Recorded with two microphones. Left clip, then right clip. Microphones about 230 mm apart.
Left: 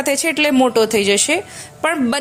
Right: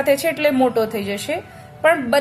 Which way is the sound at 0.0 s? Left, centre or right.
Left.